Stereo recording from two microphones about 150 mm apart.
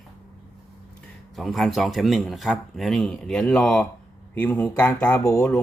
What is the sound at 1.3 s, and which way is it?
Speech, centre (ahead or behind).